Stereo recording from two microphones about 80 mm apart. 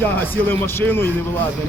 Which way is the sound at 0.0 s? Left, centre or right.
Left.